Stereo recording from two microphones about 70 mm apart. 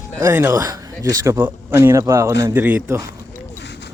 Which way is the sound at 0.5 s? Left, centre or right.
Right.